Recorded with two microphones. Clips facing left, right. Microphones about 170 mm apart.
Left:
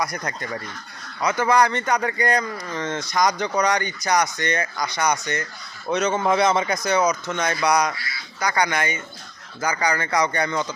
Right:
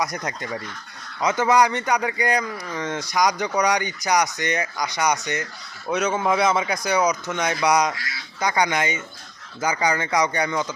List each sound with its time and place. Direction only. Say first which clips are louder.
0.0 s speech: even; 20° right (ahead or behind)